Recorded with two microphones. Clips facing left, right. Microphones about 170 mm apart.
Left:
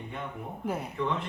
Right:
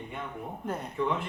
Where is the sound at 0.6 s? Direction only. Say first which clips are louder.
Left 3 dB; 10° left (ahead or behind).